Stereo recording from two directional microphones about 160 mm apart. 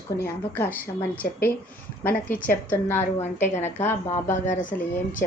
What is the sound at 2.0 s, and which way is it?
Speech, 60° left (ahead or behind).